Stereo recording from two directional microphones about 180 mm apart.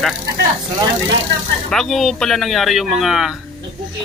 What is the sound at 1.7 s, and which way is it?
Speech, centre (ahead or behind).